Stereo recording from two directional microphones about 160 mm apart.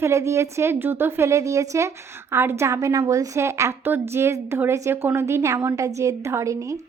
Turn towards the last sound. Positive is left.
turn(degrees=-20)  # may be behind; listen again after turning